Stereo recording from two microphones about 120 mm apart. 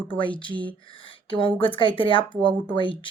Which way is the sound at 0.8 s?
45° left (ahead or behind).